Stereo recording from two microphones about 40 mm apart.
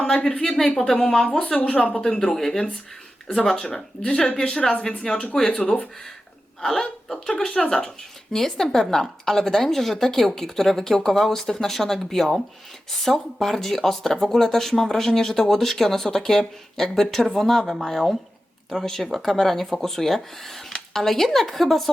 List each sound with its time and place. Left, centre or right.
0.4 s speech: centre
1.7 s speech: left
2.0 s speech: left
2.3 s speech: centre
3.8 s speech: left; by 21.8 s centre